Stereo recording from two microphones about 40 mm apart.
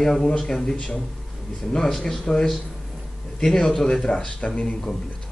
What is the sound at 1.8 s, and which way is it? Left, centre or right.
A man's voice, centre.